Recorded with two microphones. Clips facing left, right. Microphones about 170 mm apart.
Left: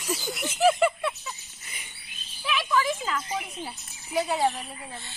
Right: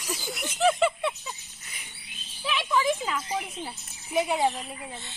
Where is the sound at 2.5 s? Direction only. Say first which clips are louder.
Left 1 dB; 25° right (ahead or behind).